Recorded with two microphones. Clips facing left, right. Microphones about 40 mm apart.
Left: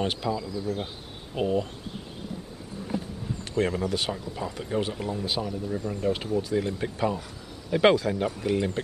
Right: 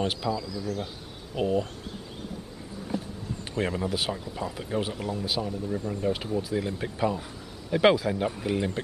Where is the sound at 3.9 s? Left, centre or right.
Centre.